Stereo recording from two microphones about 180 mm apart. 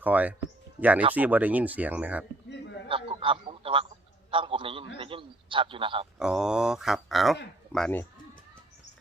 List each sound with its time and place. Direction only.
0.0 s speech: 10° right (ahead or behind)
2.9 s a man's voice: 30° right (ahead or behind)
6.1 s speech: 5° right (ahead or behind)